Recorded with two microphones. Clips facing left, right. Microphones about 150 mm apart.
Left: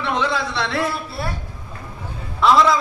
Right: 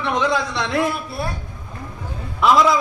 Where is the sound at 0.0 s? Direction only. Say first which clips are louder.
Right 2 dB; 20° right (ahead or behind).